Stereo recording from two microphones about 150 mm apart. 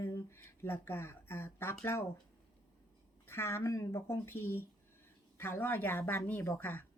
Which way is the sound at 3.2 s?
15° left (ahead or behind).